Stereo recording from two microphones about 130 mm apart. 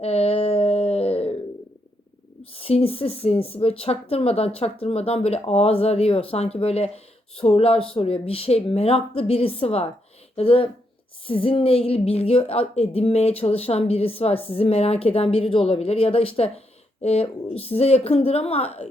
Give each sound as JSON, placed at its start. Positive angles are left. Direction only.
{"t": 0.0, "sound": "dog", "side_deg": 50}
{"t": 2.4, "sound": "speech", "side_deg": 50}